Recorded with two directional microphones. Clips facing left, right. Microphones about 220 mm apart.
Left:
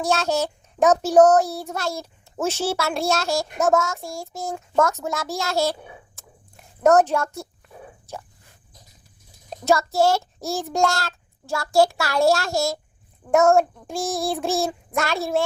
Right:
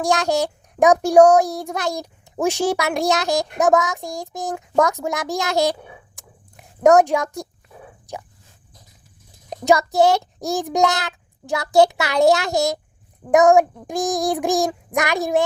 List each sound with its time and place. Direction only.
0.0 s a child's voice: 15° right (ahead or behind)
6.1 s a sound: 15° right (ahead or behind)
9.5 s a child's voice: 15° right (ahead or behind)